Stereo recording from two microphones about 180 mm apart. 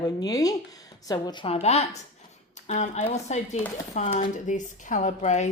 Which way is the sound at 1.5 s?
35° left (ahead or behind).